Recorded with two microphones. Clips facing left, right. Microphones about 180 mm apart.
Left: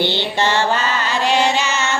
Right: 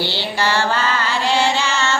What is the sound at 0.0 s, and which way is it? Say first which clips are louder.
Music: left 3 dB; 20° left (ahead or behind).